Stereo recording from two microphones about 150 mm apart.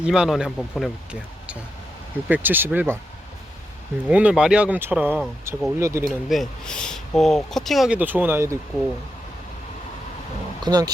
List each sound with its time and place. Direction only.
0.0 s speech: 5° right (ahead or behind)
4.1 s speech: 10° right (ahead or behind)
5.8 s speech: 20° right (ahead or behind)
6.1 s speech: centre (ahead or behind); by 8.5 s 15° right (ahead or behind)
10.6 s speech: 25° right (ahead or behind)